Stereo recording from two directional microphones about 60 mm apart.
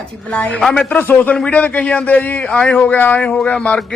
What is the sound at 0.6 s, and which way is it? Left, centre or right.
Speech, centre.